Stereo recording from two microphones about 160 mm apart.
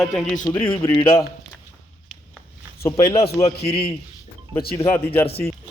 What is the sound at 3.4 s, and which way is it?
Speech, 40° left (ahead or behind).